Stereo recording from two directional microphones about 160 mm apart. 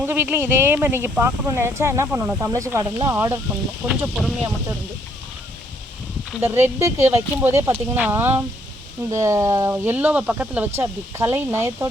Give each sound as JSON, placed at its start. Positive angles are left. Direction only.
{"t": 0.0, "sound": "speech", "side_deg": -10}
{"t": 3.8, "sound": "speech", "side_deg": -5}
{"t": 6.4, "sound": "speech", "side_deg": -15}